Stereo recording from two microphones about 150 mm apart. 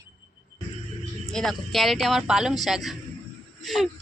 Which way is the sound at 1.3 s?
5° left (ahead or behind).